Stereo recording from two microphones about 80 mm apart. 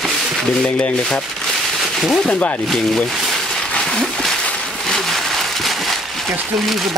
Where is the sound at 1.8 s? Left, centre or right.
Centre.